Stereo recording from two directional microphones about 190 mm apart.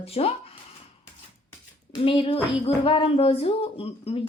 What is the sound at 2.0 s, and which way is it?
Speech, 30° left (ahead or behind).